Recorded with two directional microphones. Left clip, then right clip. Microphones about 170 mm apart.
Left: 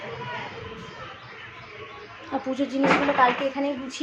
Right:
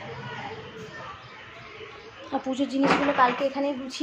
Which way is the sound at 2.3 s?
Centre (ahead or behind).